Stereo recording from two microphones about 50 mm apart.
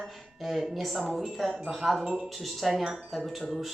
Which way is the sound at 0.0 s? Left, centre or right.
Centre.